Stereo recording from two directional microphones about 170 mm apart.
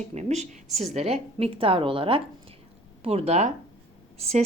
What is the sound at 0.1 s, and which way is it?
A woman's voice, 40° right (ahead or behind).